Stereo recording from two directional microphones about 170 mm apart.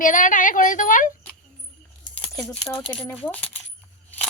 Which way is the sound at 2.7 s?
5° left (ahead or behind).